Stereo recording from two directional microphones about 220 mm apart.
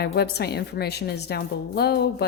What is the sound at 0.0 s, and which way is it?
Speech, 50° left (ahead or behind).